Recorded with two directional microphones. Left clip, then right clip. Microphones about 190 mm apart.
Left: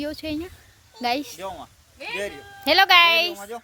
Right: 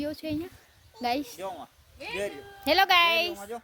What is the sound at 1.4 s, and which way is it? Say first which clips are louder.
Speech: left 3 dB; 5° right (ahead or behind).